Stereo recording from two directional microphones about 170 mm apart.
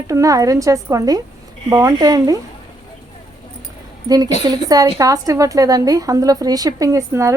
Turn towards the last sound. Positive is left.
turn(degrees=-20)  # may be behind; listen again after turning